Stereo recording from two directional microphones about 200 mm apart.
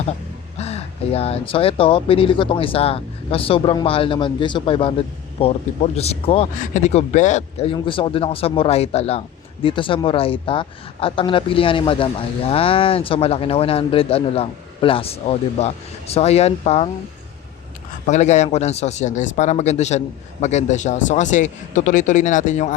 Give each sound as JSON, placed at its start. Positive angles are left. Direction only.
{"t": 0.6, "sound": "speech", "side_deg": 30}
{"t": 18.0, "sound": "speech", "side_deg": 35}